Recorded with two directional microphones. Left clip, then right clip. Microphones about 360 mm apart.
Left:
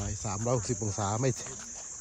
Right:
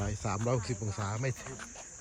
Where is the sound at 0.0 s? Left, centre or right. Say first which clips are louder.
Even; centre.